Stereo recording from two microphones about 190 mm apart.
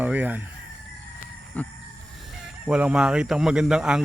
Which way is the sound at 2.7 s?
5° right (ahead or behind).